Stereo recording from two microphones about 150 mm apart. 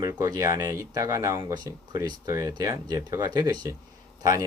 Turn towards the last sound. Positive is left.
turn(degrees=-25)  # may be behind; listen again after turning